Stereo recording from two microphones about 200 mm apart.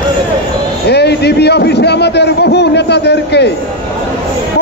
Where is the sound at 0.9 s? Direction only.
55° left (ahead or behind).